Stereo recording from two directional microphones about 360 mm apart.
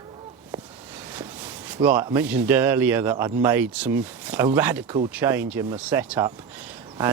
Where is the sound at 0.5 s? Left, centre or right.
Centre.